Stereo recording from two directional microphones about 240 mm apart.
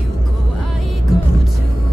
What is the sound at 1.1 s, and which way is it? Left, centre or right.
Music, centre.